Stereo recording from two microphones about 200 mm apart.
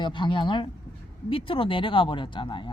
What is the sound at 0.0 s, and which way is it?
Speech, 25° left (ahead or behind).